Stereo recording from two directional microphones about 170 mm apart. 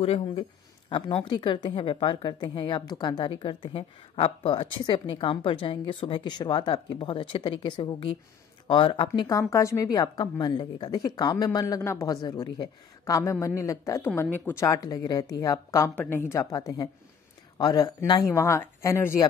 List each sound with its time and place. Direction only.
0.0 s a woman's voice: 35° left (ahead or behind); by 19.2 s 15° left (ahead or behind)